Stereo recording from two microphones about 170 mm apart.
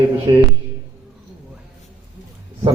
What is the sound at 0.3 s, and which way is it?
Speech, 25° right (ahead or behind).